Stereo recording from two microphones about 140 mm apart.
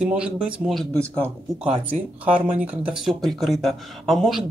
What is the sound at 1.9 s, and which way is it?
A man's voice, 10° right (ahead or behind).